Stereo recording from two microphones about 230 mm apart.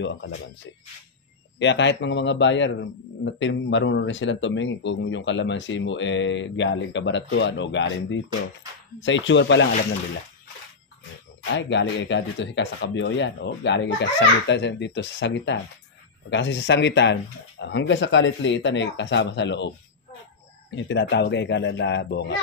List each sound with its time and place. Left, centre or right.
0.0 s a man's voice: left
11.5 s a man's voice: left
20.7 s a man's voice: left